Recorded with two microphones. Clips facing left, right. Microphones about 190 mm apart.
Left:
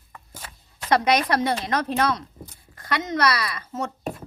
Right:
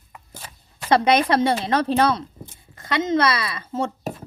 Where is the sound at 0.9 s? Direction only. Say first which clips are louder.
Right 3 dB; 25° right (ahead or behind).